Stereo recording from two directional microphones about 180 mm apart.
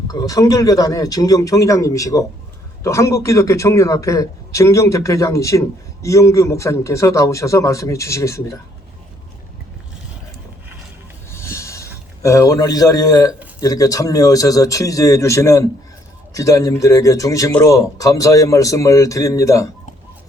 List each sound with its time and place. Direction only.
0.1 s a man's voice: 20° left (ahead or behind)
11.3 s a sound: 15° left (ahead or behind)
12.2 s a man's voice: 15° left (ahead or behind)